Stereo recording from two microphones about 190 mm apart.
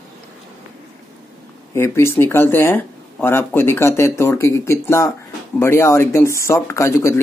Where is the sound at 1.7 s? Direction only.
15° left (ahead or behind).